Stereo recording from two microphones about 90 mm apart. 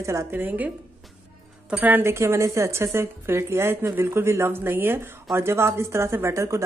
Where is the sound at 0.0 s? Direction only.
30° right (ahead or behind).